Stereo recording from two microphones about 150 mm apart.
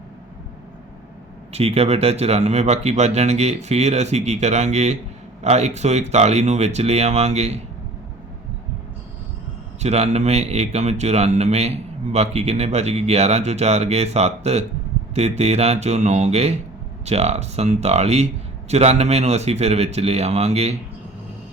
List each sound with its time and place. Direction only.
1.5 s speech: 45° right (ahead or behind)
9.8 s speech: 45° right (ahead or behind)